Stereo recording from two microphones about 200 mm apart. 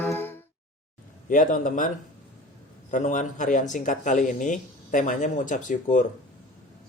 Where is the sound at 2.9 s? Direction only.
40° left (ahead or behind).